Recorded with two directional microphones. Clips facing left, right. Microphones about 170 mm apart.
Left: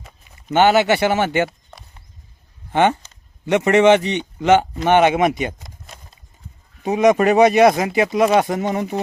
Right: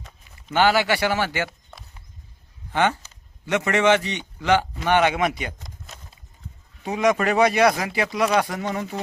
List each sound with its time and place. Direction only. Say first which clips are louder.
0.5 s speech: left 5 dB; 20° left (ahead or behind)
2.7 s speech: left 5 dB; 20° left (ahead or behind)
5.5 s a sound: left 1 dB; 5° left (ahead or behind)
6.8 s speech: left 6 dB; 20° left (ahead or behind)